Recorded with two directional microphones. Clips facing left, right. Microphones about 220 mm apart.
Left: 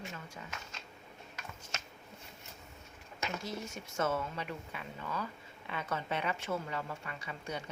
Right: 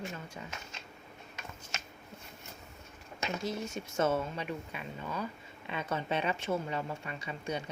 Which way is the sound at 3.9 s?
20° right (ahead or behind).